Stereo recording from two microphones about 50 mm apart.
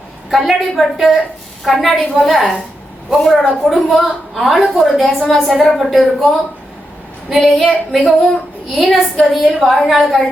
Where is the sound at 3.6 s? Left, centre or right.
Centre.